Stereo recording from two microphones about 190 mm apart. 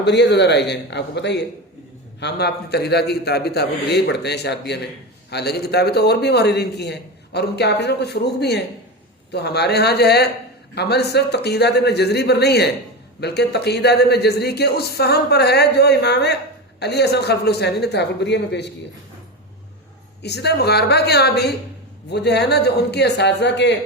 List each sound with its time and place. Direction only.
0.0 s a man's voice: 65° left (ahead or behind)
20.2 s a man's voice: 60° left (ahead or behind)